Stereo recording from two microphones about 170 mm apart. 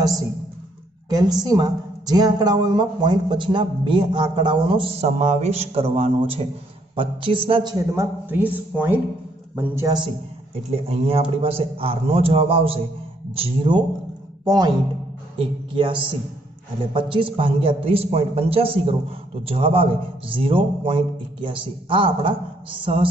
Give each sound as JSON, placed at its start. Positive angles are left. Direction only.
{"t": 1.0, "sound": "a woman's voice", "side_deg": -20}
{"t": 10.7, "sound": "a man's voice", "side_deg": -35}